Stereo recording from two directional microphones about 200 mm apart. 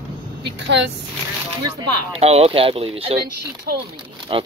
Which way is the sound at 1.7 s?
30° right (ahead or behind).